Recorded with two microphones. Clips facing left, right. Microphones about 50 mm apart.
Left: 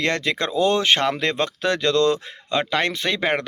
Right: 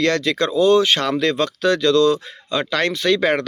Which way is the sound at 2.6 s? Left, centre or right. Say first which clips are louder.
Right 3 dB; left.